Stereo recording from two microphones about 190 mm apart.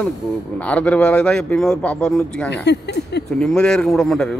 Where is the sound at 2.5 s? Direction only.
65° left (ahead or behind).